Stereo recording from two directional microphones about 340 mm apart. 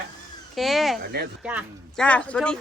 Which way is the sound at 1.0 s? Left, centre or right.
Right.